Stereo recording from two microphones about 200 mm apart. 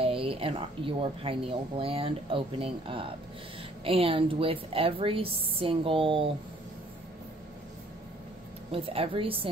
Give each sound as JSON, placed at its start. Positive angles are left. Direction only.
{"t": 0.0, "sound": "speech", "side_deg": -25}
{"t": 8.7, "sound": "speech", "side_deg": -30}